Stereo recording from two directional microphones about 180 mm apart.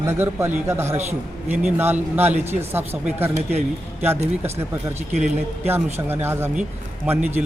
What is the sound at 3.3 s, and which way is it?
Speech, 35° right (ahead or behind).